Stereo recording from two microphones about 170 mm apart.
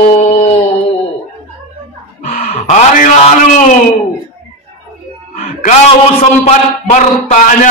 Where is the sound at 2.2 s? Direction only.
40° left (ahead or behind).